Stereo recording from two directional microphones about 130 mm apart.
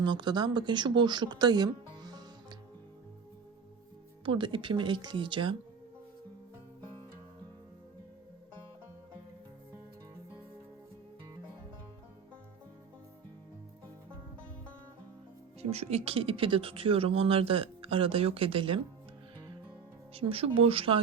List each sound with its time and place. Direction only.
0.0 s speech: 35° right (ahead or behind)
4.3 s speech: 40° right (ahead or behind)
15.7 s speech: 55° right (ahead or behind)
20.1 s speech: 45° right (ahead or behind)